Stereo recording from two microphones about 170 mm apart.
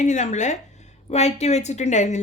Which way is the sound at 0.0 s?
45° left (ahead or behind).